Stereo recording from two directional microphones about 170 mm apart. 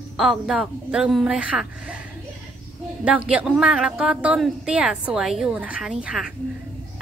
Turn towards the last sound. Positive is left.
turn(degrees=-5)  # may be behind; listen again after turning